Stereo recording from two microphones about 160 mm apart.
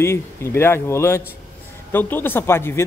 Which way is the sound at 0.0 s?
15° left (ahead or behind).